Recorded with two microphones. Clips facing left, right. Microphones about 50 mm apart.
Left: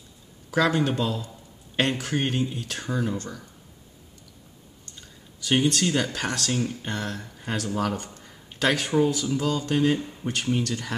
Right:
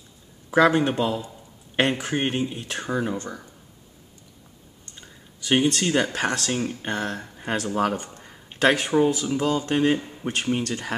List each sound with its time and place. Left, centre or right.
0.5 s speech: right
4.9 s speech: right
7.9 s speech: centre
8.2 s speech: right
9.9 s speech: centre